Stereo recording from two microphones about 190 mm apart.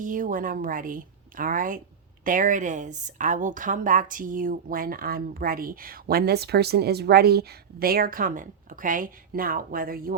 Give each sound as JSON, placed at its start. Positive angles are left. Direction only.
{"t": 0.0, "sound": "speech", "side_deg": -45}